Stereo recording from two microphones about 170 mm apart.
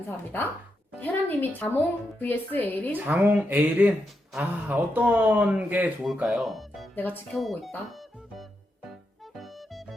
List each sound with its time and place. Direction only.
0.9 s a woman's voice: 10° left (ahead or behind)
2.9 s speech: 10° right (ahead or behind)
6.9 s speech: 10° left (ahead or behind)
7.3 s speech: centre (ahead or behind)
9.3 s music: centre (ahead or behind)